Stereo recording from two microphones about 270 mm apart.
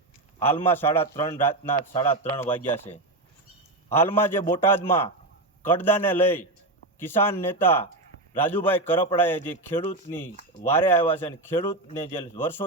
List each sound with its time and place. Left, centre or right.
0.4 s a man's voice: centre
3.8 s a man's voice: centre
5.6 s a man's voice: centre